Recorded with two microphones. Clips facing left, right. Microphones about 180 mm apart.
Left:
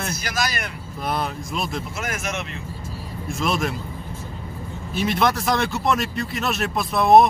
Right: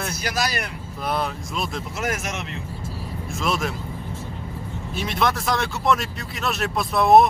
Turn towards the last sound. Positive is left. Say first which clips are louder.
# left 1 dB
turn(degrees=0)  # may be behind; listen again after turning